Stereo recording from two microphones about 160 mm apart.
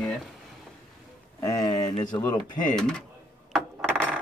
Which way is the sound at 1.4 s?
20° left (ahead or behind).